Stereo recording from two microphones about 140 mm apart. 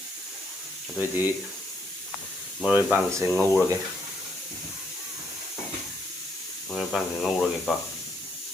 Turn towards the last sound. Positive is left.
turn(degrees=0)  # may be behind; listen again after turning